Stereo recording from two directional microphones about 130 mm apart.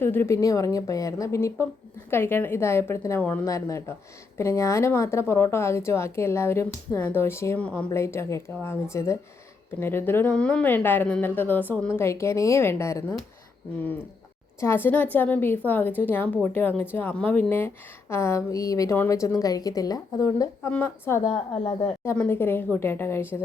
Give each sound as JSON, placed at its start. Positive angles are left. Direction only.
{"t": 0.0, "sound": "a woman's voice", "side_deg": 15}
{"t": 14.6, "sound": "a woman's voice", "side_deg": 15}
{"t": 20.7, "sound": "a woman's voice", "side_deg": 15}
{"t": 21.2, "sound": "a woman's voice", "side_deg": 45}
{"t": 22.1, "sound": "a woman's voice", "side_deg": 15}